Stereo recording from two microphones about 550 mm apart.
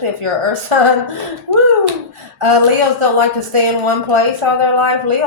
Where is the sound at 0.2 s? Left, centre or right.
Right.